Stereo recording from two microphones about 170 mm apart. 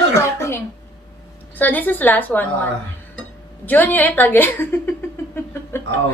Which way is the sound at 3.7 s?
10° left (ahead or behind).